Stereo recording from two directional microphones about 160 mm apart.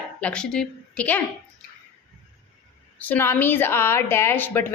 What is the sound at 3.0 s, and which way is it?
A woman's voice, 10° left (ahead or behind).